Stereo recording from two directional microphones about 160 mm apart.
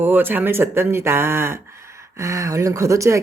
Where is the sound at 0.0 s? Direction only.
10° right (ahead or behind).